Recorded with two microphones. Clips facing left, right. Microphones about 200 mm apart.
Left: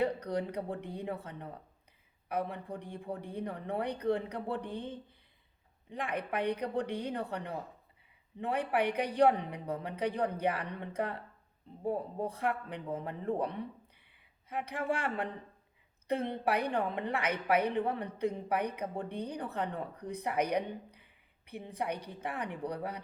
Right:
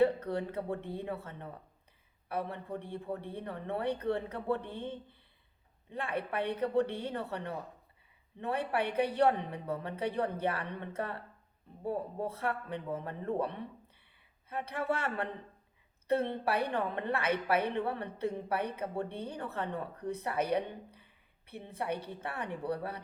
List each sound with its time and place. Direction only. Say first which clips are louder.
0.0 s a woman's voice: right 3 dB; 15° left (ahead or behind)
14.5 s a woman's voice: even; 15° left (ahead or behind)